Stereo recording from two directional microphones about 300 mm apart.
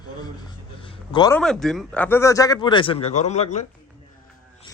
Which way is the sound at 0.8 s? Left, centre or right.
Centre.